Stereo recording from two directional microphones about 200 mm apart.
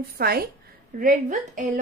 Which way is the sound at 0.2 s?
50° right (ahead or behind).